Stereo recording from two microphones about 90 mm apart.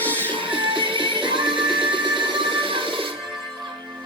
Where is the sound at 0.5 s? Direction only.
70° right (ahead or behind).